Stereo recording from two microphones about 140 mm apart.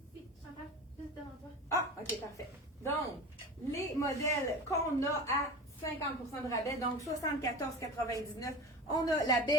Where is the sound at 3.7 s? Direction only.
20° left (ahead or behind).